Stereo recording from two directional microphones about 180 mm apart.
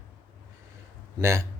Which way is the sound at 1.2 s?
15° right (ahead or behind).